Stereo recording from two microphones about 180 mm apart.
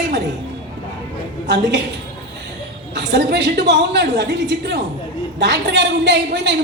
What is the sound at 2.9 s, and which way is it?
A woman's voice, 70° right (ahead or behind).